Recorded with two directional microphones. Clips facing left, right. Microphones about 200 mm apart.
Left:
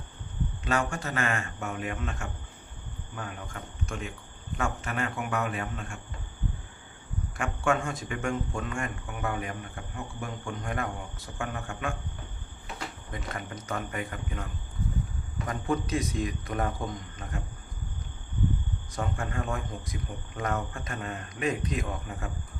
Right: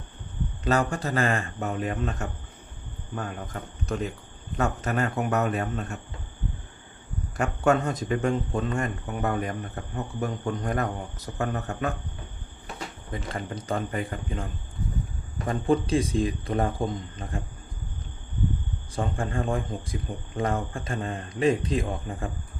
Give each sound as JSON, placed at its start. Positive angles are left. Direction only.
{"t": 0.6, "sound": "a man's voice", "side_deg": -35}
{"t": 7.3, "sound": "a man's voice", "side_deg": -40}
{"t": 13.1, "sound": "a man's voice", "side_deg": -30}
{"t": 15.4, "sound": "a man's voice", "side_deg": -30}
{"t": 18.9, "sound": "a man's voice", "side_deg": -30}